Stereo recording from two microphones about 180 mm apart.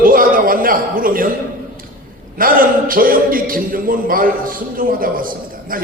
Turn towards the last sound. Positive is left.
turn(degrees=-50)  # may be behind; listen again after turning